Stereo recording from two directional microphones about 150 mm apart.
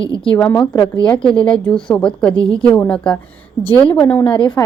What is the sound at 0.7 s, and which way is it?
Speech, 30° left (ahead or behind).